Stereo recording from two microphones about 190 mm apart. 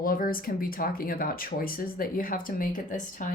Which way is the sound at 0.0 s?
50° left (ahead or behind).